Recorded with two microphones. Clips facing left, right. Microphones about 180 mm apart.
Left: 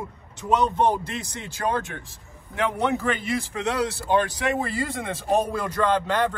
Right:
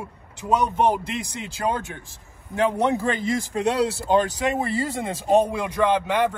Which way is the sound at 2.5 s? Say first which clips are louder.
Right 3 dB; 30° right (ahead or behind).